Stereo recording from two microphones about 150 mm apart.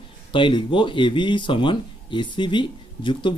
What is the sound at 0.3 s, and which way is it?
Speech, 35° left (ahead or behind).